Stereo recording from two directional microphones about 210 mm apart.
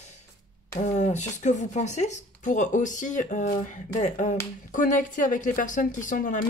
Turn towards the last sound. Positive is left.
turn(degrees=40)  # may be behind; listen again after turning